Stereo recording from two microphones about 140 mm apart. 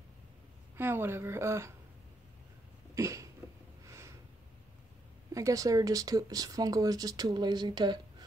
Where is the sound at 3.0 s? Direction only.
20° right (ahead or behind).